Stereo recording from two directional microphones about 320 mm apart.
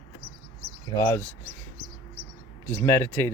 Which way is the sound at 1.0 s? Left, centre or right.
Centre.